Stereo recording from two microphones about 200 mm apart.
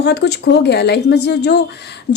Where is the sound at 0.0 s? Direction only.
55° left (ahead or behind).